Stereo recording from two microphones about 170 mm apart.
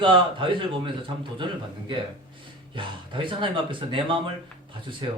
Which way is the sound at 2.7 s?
30° right (ahead or behind).